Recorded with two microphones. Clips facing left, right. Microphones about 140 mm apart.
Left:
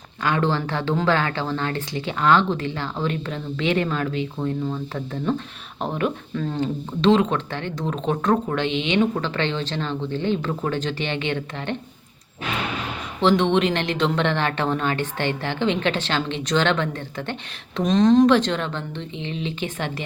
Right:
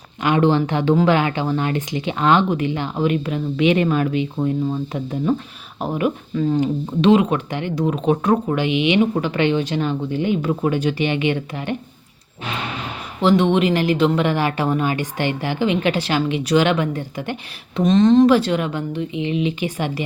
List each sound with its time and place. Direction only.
0.2 s speech: 15° right (ahead or behind)
13.2 s speech: 5° right (ahead or behind)
17.7 s speech: centre (ahead or behind)